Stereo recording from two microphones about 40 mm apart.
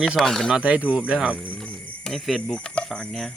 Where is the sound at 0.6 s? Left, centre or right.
Right.